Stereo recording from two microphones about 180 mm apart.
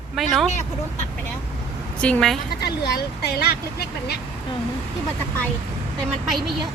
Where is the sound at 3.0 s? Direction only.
60° left (ahead or behind).